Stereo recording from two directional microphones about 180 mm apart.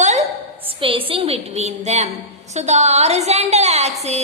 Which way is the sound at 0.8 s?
30° right (ahead or behind).